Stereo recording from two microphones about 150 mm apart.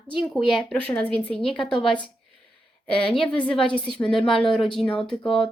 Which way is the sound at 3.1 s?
5° left (ahead or behind).